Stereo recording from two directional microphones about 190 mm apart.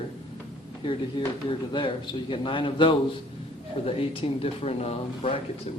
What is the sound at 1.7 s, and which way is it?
A man's voice, 25° left (ahead or behind).